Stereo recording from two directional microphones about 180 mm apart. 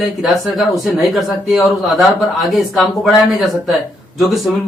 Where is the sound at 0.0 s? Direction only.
Centre (ahead or behind).